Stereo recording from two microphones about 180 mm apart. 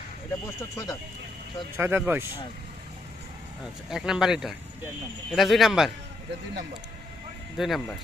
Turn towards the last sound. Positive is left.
turn(degrees=0)  # may be behind; listen again after turning